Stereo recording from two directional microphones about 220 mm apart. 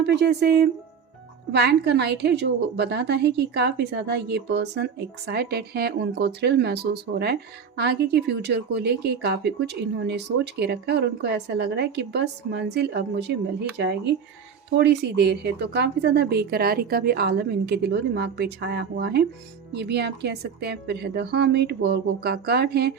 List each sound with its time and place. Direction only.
0.0 s a woman's voice: 50° right (ahead or behind)